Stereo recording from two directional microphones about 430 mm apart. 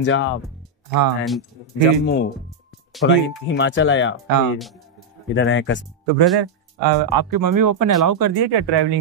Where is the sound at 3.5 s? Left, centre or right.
Left.